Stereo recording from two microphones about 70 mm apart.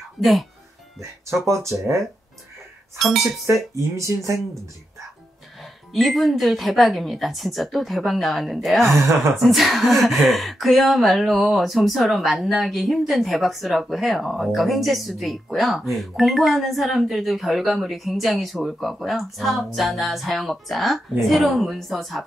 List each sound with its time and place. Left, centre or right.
0.2 s a woman's voice: centre
1.4 s speech: right
3.0 s a woman's voice: centre
3.4 s speech: right
5.9 s a woman's voice: centre